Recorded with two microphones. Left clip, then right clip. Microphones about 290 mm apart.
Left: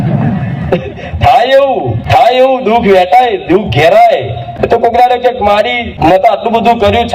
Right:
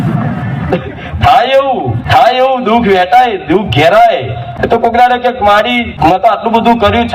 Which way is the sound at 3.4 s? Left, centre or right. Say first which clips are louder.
Left 1 dB; left.